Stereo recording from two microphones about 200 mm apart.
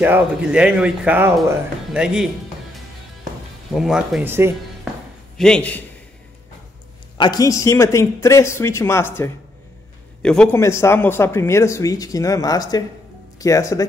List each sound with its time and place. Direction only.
0.0 s speech: 5° right (ahead or behind)
3.7 s speech: centre (ahead or behind)
5.4 s speech: 5° left (ahead or behind)
7.2 s speech: 20° left (ahead or behind)